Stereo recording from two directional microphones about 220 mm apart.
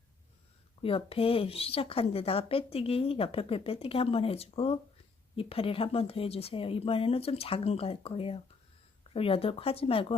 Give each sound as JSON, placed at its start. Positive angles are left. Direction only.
{"t": 0.8, "sound": "speech", "side_deg": 25}